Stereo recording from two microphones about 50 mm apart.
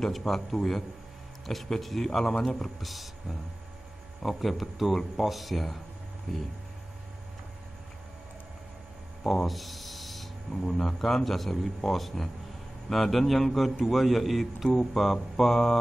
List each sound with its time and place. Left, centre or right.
0.0 s a man's voice: centre
2.8 s speech: centre
9.2 s rub: centre
10.6 s a man's voice: centre